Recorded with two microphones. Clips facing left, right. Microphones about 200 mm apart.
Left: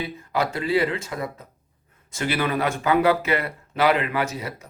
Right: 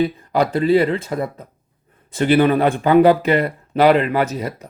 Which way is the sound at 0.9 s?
55° right (ahead or behind).